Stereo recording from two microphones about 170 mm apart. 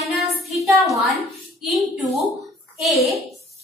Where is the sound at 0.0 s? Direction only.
Centre (ahead or behind).